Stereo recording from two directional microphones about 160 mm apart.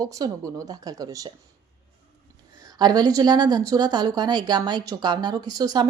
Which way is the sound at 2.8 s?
25° right (ahead or behind).